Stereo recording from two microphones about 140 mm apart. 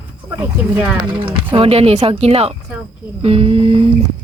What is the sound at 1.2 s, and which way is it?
A woman's voice, 40° right (ahead or behind).